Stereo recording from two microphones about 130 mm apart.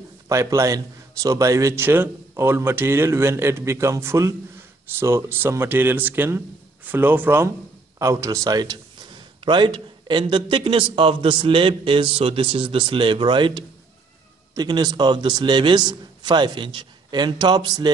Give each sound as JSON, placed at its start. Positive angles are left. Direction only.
{"t": 0.3, "sound": "a man's voice", "side_deg": -25}